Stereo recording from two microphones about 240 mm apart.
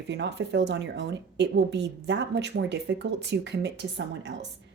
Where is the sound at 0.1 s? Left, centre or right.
Right.